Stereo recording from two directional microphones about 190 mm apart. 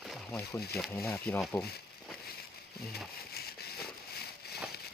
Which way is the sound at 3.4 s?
55° left (ahead or behind).